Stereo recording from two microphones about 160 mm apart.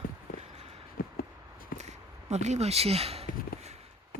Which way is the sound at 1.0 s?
60° left (ahead or behind).